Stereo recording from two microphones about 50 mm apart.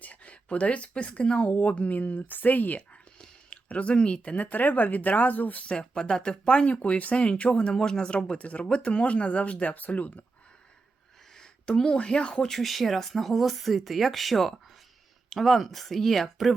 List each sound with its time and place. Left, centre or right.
0.0 s speech: left
5.6 s speech: centre
6.7 s speech: left
11.3 s speech: centre